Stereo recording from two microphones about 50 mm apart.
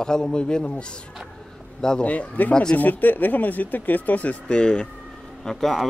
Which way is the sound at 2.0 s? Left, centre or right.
Left.